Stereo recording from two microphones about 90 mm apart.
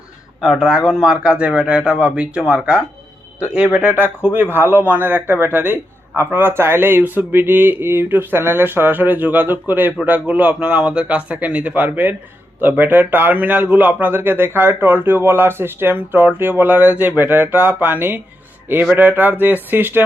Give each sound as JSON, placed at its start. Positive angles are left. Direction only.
{"t": 0.4, "sound": "a man's voice", "side_deg": -5}